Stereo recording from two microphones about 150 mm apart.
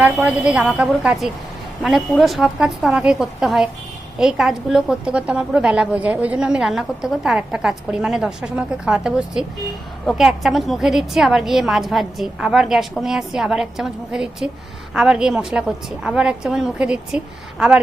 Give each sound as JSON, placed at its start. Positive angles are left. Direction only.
{"t": 0.0, "sound": "a woman's voice", "side_deg": -5}